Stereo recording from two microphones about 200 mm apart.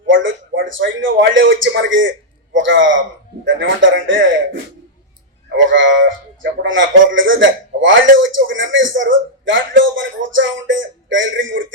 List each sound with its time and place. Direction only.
0.0 s a man's voice: 70° right (ahead or behind)
5.5 s a man's voice: 70° right (ahead or behind)